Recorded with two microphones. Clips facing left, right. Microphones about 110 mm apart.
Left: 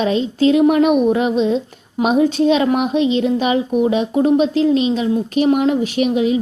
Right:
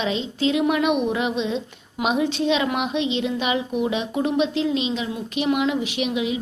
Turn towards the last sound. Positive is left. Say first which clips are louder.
# left 8 dB
turn(degrees=45)  # may be behind; listen again after turning